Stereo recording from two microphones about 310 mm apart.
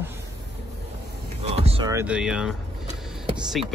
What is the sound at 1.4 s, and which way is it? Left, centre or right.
Speech, centre.